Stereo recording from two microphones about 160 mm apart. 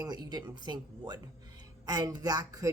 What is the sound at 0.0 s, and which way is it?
A woman's voice, 25° right (ahead or behind).